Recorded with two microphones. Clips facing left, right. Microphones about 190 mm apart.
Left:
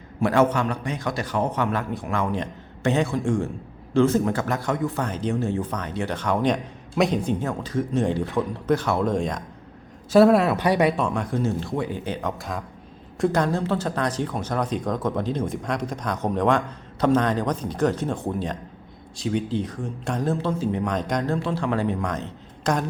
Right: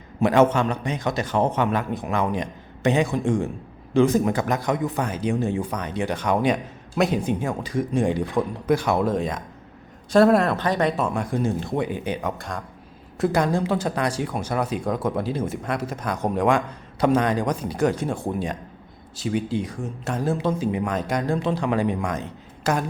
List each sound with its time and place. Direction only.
0.2 s a man's voice: 20° right (ahead or behind); by 10.9 s 10° left (ahead or behind)
10.9 s speech: 5° right (ahead or behind)
12.4 s speech: centre (ahead or behind)